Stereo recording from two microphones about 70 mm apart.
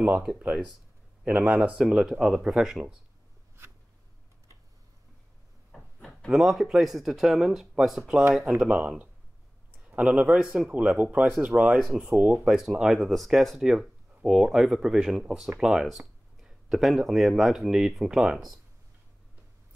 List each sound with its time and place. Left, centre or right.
0.3 s speech: centre
5.7 s a sound: centre
6.3 s speech: centre
8.5 s speech: centre
10.4 s speech: centre
10.7 s speech: right
12.5 s speech: centre